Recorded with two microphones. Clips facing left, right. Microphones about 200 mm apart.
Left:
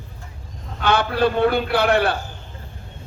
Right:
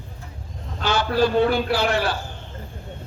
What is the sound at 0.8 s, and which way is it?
A man's voice, 60° left (ahead or behind).